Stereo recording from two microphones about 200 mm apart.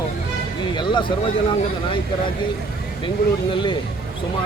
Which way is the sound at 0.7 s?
25° left (ahead or behind).